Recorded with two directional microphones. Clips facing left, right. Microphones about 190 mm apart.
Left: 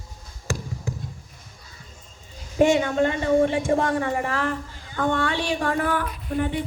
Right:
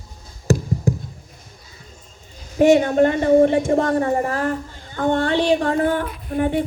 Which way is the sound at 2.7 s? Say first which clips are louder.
Right 6 dB; 40° right (ahead or behind).